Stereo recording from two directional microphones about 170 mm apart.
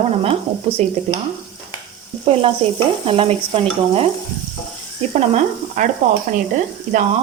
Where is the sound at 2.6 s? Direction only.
35° right (ahead or behind).